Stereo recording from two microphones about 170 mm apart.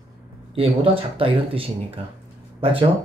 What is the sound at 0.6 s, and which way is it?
Speech, 35° right (ahead or behind).